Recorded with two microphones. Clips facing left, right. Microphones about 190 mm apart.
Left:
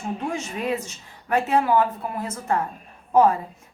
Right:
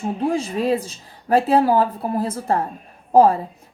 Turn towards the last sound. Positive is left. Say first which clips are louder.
# right 4 dB
turn(degrees=-35)  # may be behind; listen again after turning